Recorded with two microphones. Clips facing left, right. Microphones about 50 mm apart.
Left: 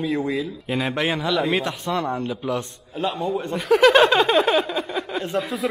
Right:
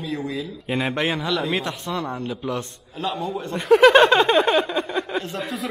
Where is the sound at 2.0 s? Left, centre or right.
Left.